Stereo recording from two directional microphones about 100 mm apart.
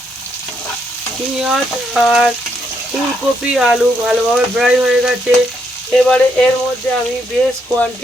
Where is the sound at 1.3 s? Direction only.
5° right (ahead or behind).